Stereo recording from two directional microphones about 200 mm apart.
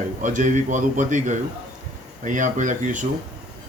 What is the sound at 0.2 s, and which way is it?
Speech, 40° right (ahead or behind).